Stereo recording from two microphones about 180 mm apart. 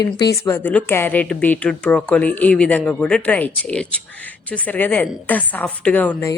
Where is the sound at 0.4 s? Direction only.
10° left (ahead or behind).